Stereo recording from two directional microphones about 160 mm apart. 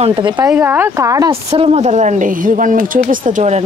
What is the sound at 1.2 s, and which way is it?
Speech, 35° right (ahead or behind).